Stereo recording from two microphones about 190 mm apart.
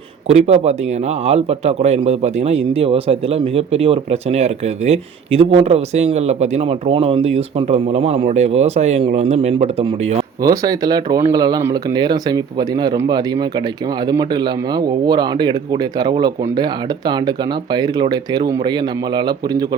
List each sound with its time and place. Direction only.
0.3 s speech: 35° right (ahead or behind)
10.4 s speech: 20° right (ahead or behind)